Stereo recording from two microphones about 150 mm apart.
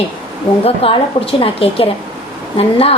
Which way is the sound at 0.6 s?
40° left (ahead or behind).